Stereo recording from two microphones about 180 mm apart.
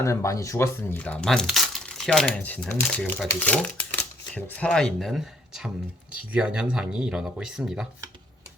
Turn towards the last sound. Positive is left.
turn(degrees=-5)  # may be behind; listen again after turning